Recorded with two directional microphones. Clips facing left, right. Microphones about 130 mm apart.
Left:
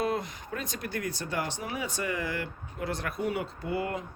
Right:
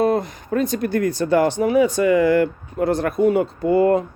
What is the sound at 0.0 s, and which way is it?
Speech, 45° right (ahead or behind).